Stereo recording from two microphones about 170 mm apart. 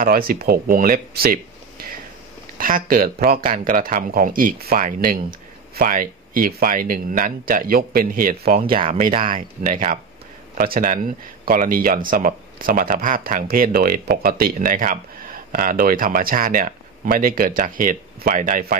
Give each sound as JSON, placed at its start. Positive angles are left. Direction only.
{"t": 0.0, "sound": "speech", "side_deg": -60}
{"t": 8.6, "sound": "speech", "side_deg": -30}
{"t": 8.9, "sound": "speech", "side_deg": -55}